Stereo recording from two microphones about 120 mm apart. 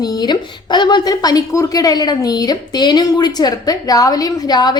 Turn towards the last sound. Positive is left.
turn(degrees=35)  # may be behind; listen again after turning